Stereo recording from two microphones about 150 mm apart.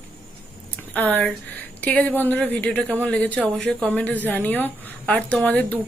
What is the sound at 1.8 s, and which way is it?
A woman's voice, 10° left (ahead or behind).